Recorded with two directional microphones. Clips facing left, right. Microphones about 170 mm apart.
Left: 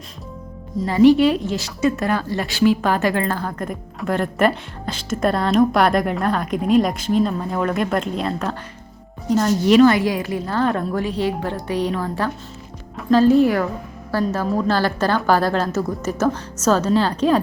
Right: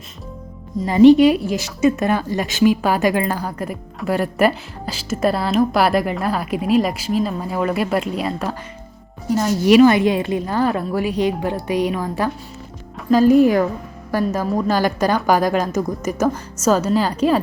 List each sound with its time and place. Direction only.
0.9 s speech: 20° right (ahead or behind)